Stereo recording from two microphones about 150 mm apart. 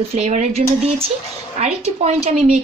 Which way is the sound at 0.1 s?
50° right (ahead or behind).